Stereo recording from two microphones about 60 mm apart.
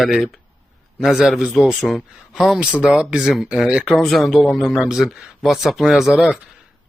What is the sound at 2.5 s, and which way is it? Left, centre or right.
A man's voice, centre.